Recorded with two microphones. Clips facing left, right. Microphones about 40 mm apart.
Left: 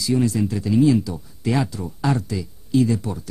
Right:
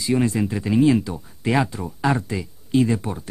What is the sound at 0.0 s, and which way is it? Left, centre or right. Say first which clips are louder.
Speech: even; right.